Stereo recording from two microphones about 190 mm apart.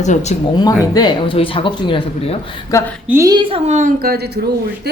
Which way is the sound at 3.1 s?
15° right (ahead or behind).